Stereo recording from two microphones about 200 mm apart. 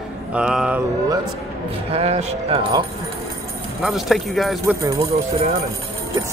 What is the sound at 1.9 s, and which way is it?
Speech, 30° right (ahead or behind).